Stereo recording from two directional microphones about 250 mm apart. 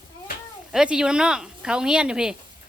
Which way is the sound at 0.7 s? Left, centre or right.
Centre.